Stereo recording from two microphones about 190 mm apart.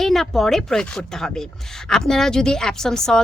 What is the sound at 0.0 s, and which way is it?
A woman's voice, centre (ahead or behind).